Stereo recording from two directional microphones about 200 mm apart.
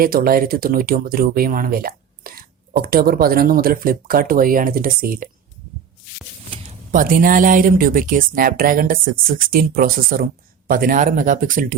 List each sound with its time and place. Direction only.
0.0 s speech: 45° right (ahead or behind)
6.9 s speech: 45° right (ahead or behind)